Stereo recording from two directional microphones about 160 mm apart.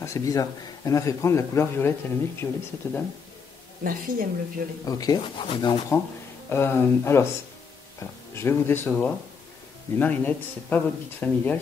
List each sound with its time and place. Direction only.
0.0 s a man's voice: 20° left (ahead or behind)
3.8 s speech: 60° right (ahead or behind)
4.8 s a man's voice: 25° left (ahead or behind)
6.5 s speech: 15° left (ahead or behind)